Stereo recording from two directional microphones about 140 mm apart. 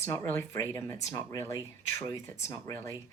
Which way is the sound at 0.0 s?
20° left (ahead or behind).